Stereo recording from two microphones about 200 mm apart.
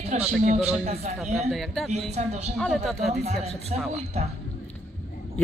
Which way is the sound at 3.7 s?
35° right (ahead or behind).